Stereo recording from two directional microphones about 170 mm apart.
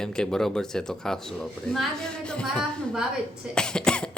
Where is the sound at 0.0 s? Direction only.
5° left (ahead or behind).